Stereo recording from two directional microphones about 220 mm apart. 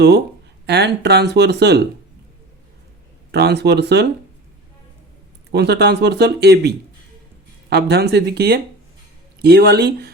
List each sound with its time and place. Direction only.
0.7 s speech: 50° right (ahead or behind)
3.3 s speech: 50° right (ahead or behind)
5.5 s speech: 50° right (ahead or behind)